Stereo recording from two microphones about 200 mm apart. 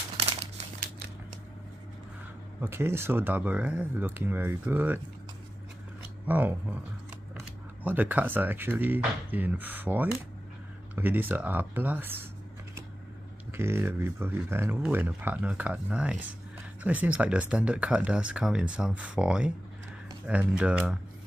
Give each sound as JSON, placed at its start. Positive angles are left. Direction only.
{"t": 0.4, "sound": "crumpling", "side_deg": -35}
{"t": 2.6, "sound": "speech", "side_deg": -10}
{"t": 6.2, "sound": "speech", "side_deg": -10}
{"t": 7.8, "sound": "speech", "side_deg": -10}
{"t": 13.5, "sound": "speech", "side_deg": -10}